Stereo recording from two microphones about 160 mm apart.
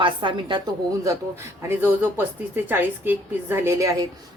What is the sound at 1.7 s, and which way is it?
Speech, 10° right (ahead or behind).